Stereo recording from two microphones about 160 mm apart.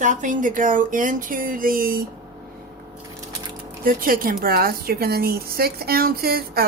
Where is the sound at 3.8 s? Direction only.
60° right (ahead or behind).